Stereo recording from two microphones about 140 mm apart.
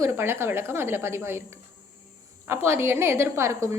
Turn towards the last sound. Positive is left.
turn(degrees=-20)  # may be behind; listen again after turning